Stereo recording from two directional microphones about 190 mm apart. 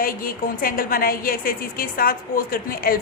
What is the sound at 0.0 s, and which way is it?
A woman's voice, 50° left (ahead or behind).